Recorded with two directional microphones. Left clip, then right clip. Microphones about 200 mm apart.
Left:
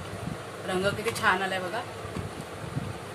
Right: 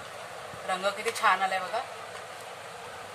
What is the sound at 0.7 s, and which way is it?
Speech, centre (ahead or behind).